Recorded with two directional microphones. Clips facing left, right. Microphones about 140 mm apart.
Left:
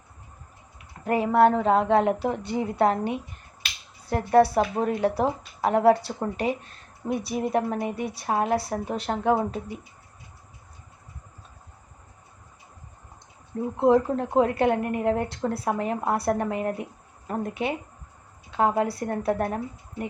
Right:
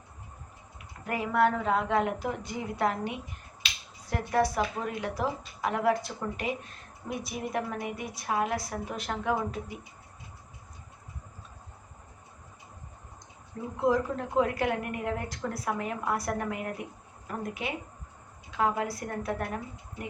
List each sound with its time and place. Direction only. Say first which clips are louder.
1.0 s a woman's voice: left 7 dB; 30° left (ahead or behind)
13.7 s a woman's voice: left 7 dB; 30° left (ahead or behind)